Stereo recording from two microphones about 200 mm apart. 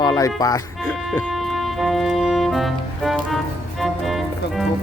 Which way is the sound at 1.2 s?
Centre (ahead or behind).